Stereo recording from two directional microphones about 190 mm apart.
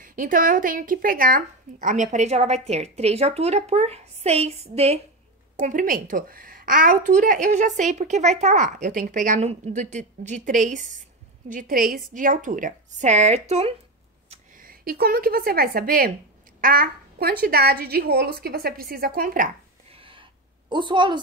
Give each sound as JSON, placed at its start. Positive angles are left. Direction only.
{"t": 0.0, "sound": "a woman's voice", "side_deg": -45}
{"t": 5.6, "sound": "a woman's voice", "side_deg": -45}
{"t": 14.3, "sound": "a woman's voice", "side_deg": -45}
{"t": 19.9, "sound": "a sound", "side_deg": -25}
{"t": 20.7, "sound": "a woman's voice", "side_deg": -25}